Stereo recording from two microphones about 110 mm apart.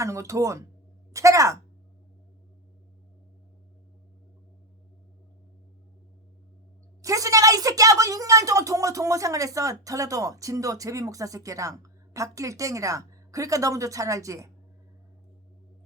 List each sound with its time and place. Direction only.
0.0 s speech: 30° right (ahead or behind)
1.1 s a sound: 30° right (ahead or behind)
7.0 s a woman's voice: 30° right (ahead or behind)